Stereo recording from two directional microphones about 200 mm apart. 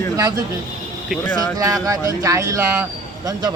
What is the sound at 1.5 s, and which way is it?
Speech, 15° right (ahead or behind).